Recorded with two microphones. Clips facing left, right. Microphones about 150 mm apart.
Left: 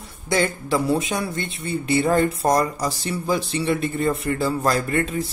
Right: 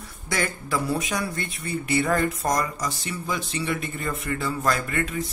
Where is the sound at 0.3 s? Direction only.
25° left (ahead or behind).